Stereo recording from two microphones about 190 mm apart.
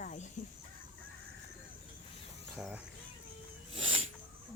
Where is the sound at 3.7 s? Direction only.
30° right (ahead or behind).